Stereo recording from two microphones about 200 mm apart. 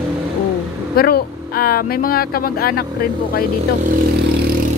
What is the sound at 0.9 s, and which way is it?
Speech, 50° left (ahead or behind).